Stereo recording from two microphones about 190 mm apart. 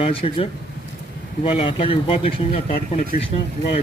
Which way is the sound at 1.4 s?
30° left (ahead or behind).